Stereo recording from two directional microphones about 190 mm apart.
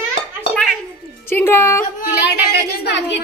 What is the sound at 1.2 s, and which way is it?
Speech, 10° left (ahead or behind).